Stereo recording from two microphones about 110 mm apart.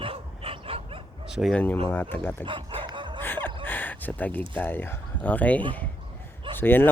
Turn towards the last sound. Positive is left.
turn(degrees=20)  # may be behind; listen again after turning